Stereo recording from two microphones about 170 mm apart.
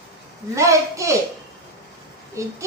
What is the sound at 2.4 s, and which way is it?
Speech, 20° right (ahead or behind).